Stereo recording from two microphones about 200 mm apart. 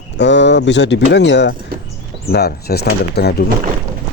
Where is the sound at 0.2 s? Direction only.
60° left (ahead or behind).